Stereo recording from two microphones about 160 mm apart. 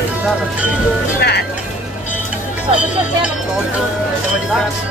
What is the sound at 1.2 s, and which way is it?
Music, 90° left.